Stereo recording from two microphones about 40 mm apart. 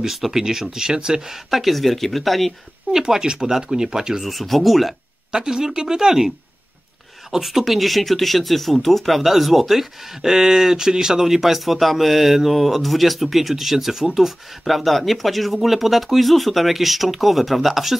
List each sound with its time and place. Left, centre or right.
0.0 s speech: centre
1.3 s speech: centre
2.9 s speech: centre
4.3 s speech: centre
5.3 s speech: centre
7.4 s speech: centre